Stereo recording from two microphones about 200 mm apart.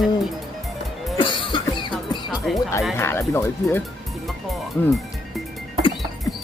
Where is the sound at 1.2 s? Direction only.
25° left (ahead or behind).